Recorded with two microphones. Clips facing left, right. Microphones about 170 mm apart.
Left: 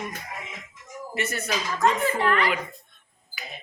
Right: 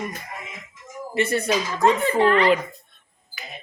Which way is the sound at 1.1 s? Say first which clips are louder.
Right 8 dB; 30° right (ahead or behind).